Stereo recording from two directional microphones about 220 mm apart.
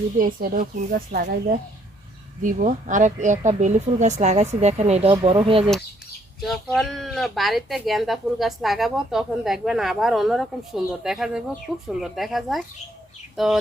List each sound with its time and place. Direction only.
0.2 s speech: 40° right (ahead or behind); by 5.7 s 25° right (ahead or behind)
6.4 s speech: centre (ahead or behind)
13.3 s chicken: centre (ahead or behind)